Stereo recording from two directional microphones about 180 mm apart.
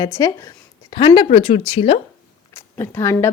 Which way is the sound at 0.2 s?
20° left (ahead or behind).